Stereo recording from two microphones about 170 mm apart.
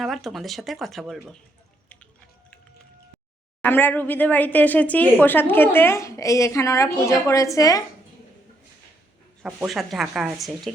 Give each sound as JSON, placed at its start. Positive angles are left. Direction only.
{"t": 0.0, "sound": "speech", "side_deg": 0}
{"t": 3.6, "sound": "a woman's voice", "side_deg": 10}
{"t": 9.4, "sound": "speech", "side_deg": -5}